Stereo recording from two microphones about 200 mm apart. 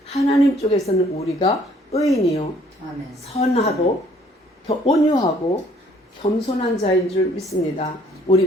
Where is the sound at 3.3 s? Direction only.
30° left (ahead or behind).